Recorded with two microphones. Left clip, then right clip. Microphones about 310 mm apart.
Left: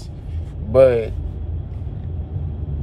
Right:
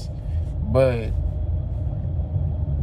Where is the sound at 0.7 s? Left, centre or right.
Centre.